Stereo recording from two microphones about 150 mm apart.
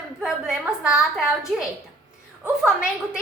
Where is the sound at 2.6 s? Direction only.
5° right (ahead or behind).